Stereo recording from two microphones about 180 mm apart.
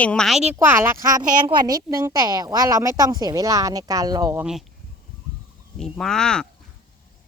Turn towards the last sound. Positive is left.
turn(degrees=5)  # may be behind; listen again after turning